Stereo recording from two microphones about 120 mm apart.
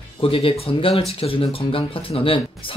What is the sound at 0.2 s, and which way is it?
Speech, 50° left (ahead or behind).